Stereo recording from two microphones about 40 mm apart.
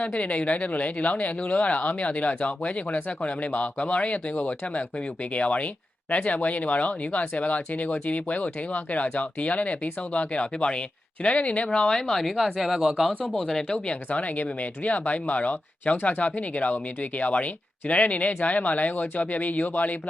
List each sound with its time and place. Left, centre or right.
0.0 s speech: left
11.9 s speech: centre
12.2 s speech: centre
12.5 s speech: centre
13.3 s speech: centre
13.7 s speech: left